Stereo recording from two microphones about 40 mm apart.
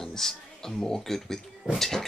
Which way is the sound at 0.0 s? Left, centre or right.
Centre.